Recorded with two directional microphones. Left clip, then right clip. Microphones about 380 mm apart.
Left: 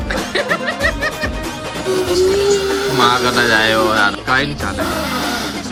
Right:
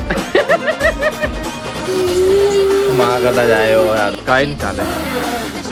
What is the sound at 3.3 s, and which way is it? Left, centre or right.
Speech, centre.